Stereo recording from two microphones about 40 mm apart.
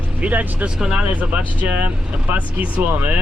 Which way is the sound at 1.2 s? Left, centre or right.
Right.